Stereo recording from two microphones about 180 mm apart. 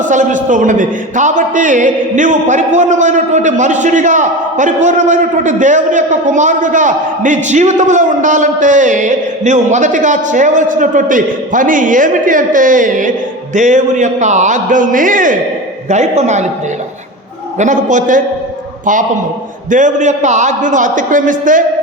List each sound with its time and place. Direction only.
0.1 s a man's voice: 45° right (ahead or behind)
17.6 s a man's voice: 45° right (ahead or behind)
19.7 s a man's voice: 45° right (ahead or behind)